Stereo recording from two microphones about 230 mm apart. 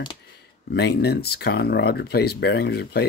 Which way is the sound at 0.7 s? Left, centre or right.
Left.